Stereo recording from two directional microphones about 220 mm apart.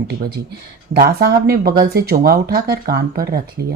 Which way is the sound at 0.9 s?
45° right (ahead or behind).